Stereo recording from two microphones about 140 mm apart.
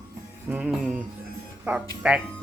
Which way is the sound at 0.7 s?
10° right (ahead or behind).